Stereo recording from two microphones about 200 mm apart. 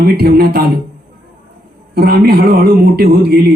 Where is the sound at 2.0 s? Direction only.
50° right (ahead or behind).